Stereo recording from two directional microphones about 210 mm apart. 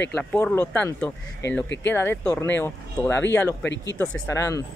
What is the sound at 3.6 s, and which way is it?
Speech, 60° left (ahead or behind).